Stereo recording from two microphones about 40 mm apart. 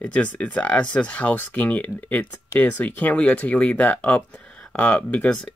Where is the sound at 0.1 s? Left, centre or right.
Left.